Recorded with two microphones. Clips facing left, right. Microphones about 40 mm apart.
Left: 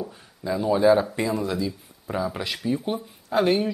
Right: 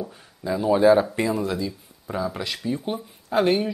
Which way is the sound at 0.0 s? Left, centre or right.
Centre.